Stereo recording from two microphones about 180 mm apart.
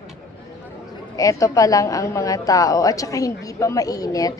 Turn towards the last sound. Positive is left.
turn(degrees=20)  # may be behind; listen again after turning